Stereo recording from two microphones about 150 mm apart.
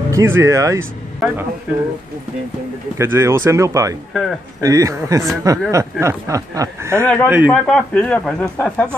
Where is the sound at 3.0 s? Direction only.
20° right (ahead or behind).